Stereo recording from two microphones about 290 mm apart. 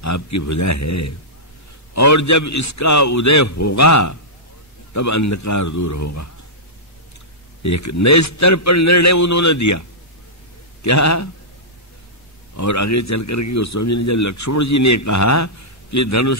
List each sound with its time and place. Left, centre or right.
0.0 s a man's voice: left
7.6 s a man's voice: left
12.5 s a man's voice: left